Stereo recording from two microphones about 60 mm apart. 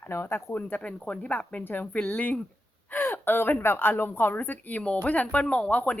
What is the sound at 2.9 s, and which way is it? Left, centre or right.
A woman's voice, left.